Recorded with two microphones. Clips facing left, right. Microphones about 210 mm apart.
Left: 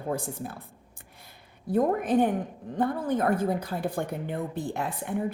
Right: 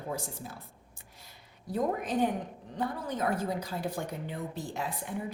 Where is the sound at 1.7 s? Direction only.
55° left (ahead or behind).